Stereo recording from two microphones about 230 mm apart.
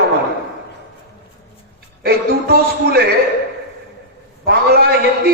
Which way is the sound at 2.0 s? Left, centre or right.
Right.